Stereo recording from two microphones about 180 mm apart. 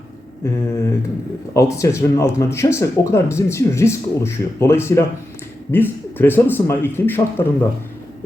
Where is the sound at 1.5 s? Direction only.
15° left (ahead or behind).